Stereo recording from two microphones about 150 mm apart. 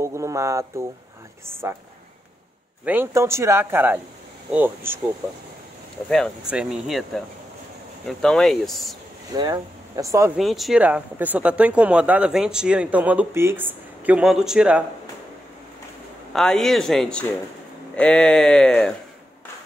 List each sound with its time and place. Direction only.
0.0 s a sound: 20° right (ahead or behind)
1.4 s speech: 15° right (ahead or behind)
2.8 s speech: 15° right (ahead or behind)
6.0 s speech: 5° left (ahead or behind)
9.3 s speech: 25° right (ahead or behind)
10.3 s speech: centre (ahead or behind)
16.3 s speech: 5° left (ahead or behind)